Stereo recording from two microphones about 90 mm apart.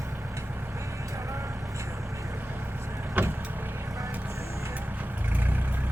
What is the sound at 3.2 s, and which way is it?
Vehicle, 20° right (ahead or behind).